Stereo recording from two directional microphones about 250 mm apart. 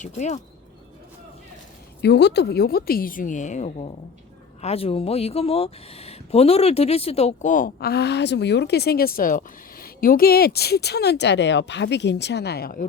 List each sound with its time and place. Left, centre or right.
0.0 s speech: left
2.0 s speech: left